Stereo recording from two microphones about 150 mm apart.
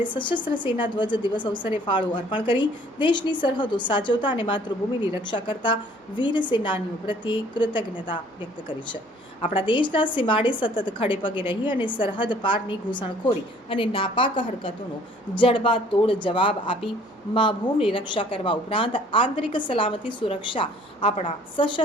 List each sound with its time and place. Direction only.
0.0 s a woman's voice: 30° left (ahead or behind)
9.6 s a woman's voice: 35° left (ahead or behind)